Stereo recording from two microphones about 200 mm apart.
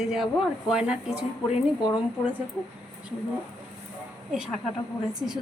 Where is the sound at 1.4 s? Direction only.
20° left (ahead or behind).